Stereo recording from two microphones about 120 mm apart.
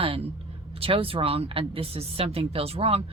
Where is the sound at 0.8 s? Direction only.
50° right (ahead or behind).